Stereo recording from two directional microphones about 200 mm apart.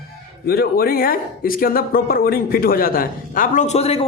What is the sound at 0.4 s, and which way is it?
Speech, 50° left (ahead or behind).